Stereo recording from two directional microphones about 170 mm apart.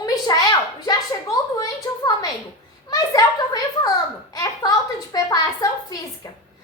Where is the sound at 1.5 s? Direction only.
20° left (ahead or behind).